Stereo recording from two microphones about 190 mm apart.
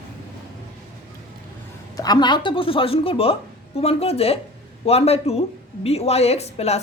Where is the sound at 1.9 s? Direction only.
20° left (ahead or behind).